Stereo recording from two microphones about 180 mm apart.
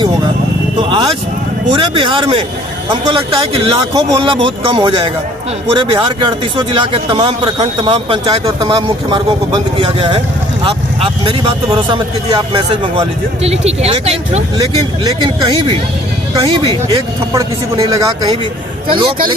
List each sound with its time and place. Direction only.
0.8 s vehicle: 25° right (ahead or behind)
1.7 s a man's voice: 30° right (ahead or behind)
14.6 s speech: 20° right (ahead or behind)